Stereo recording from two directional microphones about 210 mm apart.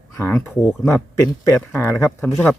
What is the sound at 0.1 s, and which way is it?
Speech, 10° left (ahead or behind).